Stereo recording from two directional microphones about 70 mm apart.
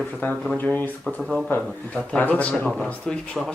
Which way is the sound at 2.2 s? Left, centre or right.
Left.